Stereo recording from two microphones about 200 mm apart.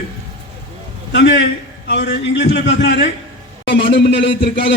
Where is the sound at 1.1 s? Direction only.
65° left (ahead or behind).